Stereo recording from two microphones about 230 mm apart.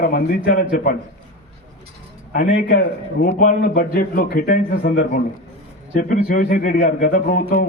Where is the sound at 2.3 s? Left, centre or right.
Left.